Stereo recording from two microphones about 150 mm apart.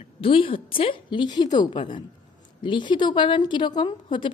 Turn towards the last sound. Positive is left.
turn(degrees=30)  # may be behind; listen again after turning